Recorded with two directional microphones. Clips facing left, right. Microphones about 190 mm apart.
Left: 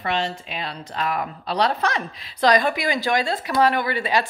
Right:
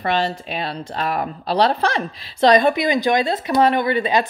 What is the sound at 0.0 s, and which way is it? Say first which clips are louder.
A woman's voice: right 4 dB; 35° right (ahead or behind).